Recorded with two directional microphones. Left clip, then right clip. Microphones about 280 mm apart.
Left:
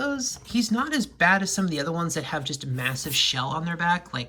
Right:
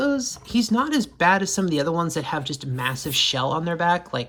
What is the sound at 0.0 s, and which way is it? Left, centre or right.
Speech, centre.